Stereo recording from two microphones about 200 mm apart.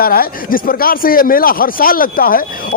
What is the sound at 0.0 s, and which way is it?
Speech, 45° left (ahead or behind).